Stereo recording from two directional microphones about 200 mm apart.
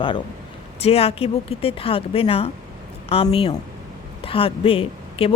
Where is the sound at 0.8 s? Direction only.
30° left (ahead or behind).